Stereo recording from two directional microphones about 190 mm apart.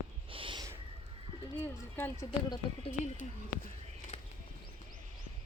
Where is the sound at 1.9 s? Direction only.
10° left (ahead or behind).